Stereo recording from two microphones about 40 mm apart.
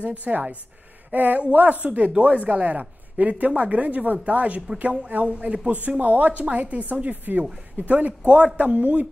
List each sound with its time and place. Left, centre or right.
0.0 s speech: right